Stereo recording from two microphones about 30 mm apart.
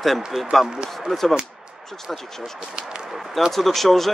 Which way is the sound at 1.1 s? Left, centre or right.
Centre.